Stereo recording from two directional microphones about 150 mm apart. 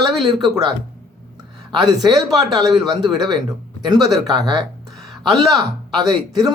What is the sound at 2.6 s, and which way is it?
Speech, 30° right (ahead or behind).